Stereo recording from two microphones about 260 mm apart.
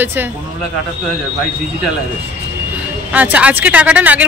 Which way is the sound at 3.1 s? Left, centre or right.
Centre.